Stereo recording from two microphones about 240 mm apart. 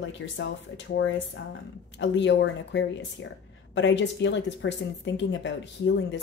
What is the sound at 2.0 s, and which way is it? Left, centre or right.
Speech, left.